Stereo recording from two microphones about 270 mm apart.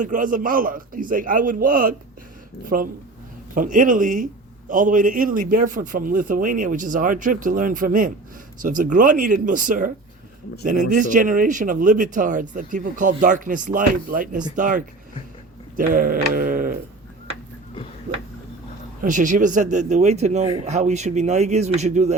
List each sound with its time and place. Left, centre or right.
0.0 s a man's voice: right
15.7 s mantra: right
19.0 s speech: right